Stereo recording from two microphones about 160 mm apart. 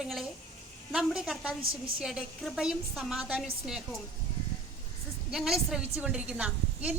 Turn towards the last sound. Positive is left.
turn(degrees=-10)  # may be behind; listen again after turning